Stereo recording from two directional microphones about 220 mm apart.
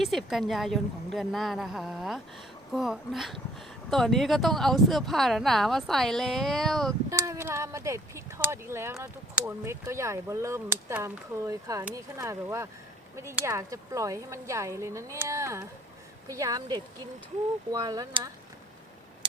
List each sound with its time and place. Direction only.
0.0 s speech: centre (ahead or behind)
7.1 s speech: 15° right (ahead or behind)